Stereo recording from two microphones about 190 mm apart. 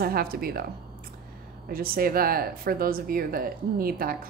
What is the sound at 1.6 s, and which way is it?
Speech, 50° right (ahead or behind).